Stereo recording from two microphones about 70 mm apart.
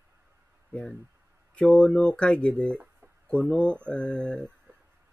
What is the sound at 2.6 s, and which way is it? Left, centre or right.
Speech, right.